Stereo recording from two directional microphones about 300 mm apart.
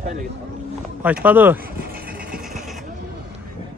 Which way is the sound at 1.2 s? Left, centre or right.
Centre.